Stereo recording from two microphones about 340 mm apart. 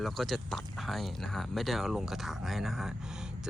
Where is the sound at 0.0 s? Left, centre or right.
Centre.